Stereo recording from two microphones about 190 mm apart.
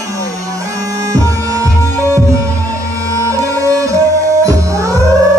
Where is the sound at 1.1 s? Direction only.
15° right (ahead or behind).